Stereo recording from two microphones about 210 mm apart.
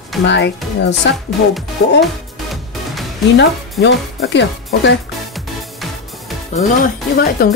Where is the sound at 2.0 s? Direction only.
Centre (ahead or behind).